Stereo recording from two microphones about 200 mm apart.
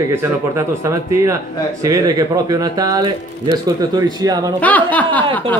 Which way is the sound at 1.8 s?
15° right (ahead or behind).